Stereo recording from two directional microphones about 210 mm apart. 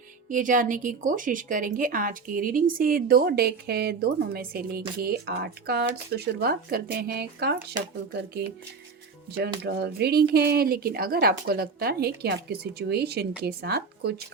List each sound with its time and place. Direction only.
0.3 s a woman's voice: 40° right (ahead or behind)
9.6 s a woman's voice: 50° right (ahead or behind)